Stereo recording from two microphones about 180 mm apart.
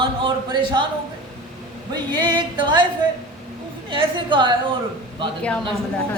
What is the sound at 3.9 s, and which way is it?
Speech, 25° right (ahead or behind).